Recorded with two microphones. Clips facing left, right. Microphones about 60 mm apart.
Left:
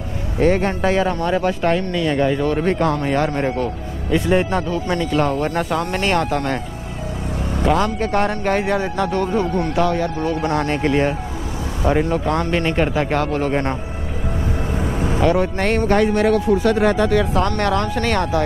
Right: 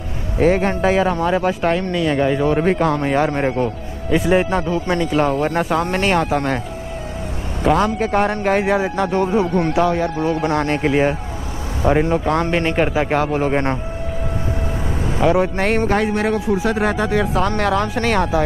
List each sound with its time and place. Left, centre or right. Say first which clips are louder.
0.4 s speech: right 1 dB; centre
4.1 s speech: right 1 dB; centre
7.6 s speech: right 2 dB; centre; by 10.7 s right
10.7 s speech: right 2 dB; centre
11.9 s speech: right 2 dB; centre
12.4 s speech: right 1 dB; centre
15.2 s speech: right 2 dB; centre